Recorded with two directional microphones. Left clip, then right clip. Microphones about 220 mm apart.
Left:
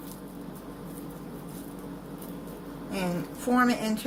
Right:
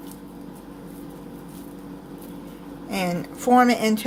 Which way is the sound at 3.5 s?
35° right (ahead or behind).